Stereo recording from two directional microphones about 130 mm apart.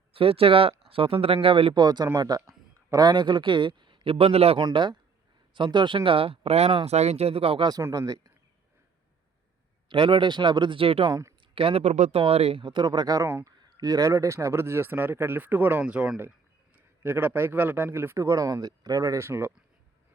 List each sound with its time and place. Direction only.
0.1 s a man's voice: 45° right (ahead or behind)
4.6 s a man's voice: 35° right (ahead or behind)
7.7 s speech: 25° right (ahead or behind)
9.9 s a man's voice: 40° right (ahead or behind)
11.1 s speech: 20° right (ahead or behind)
11.5 s speech: 45° right (ahead or behind); by 12.2 s 65° right (ahead or behind)
12.2 s speech: 50° right (ahead or behind)
12.6 s speech: 35° right (ahead or behind); by 19.5 s 20° right (ahead or behind)